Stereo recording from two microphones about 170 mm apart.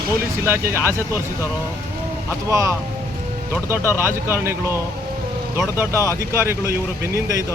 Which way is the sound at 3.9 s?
15° right (ahead or behind).